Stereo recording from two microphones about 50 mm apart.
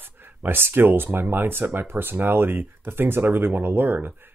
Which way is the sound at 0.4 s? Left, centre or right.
Right.